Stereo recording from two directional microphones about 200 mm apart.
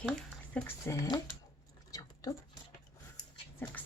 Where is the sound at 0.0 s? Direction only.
Centre (ahead or behind).